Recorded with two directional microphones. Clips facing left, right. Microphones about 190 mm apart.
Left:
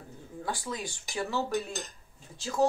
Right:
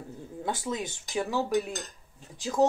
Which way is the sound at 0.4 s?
20° right (ahead or behind).